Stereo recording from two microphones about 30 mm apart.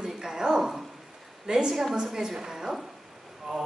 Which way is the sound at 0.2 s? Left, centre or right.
Centre.